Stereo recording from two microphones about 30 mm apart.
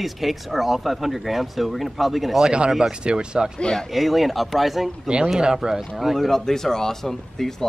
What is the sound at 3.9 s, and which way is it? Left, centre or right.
Speech, centre.